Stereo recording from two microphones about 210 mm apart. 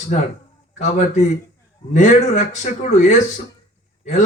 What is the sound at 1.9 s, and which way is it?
A man's voice, 35° left (ahead or behind).